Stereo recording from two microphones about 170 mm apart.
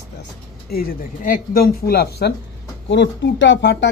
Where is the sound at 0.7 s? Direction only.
65° left (ahead or behind).